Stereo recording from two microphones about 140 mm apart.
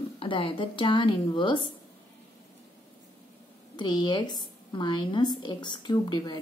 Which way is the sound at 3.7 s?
30° left (ahead or behind).